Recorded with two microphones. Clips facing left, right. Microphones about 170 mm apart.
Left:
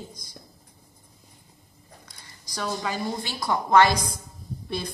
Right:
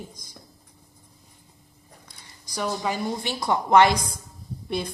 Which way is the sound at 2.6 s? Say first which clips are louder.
Right 2 dB; 15° right (ahead or behind).